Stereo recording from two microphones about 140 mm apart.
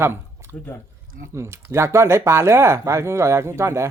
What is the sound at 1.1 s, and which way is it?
Speech, 70° right (ahead or behind).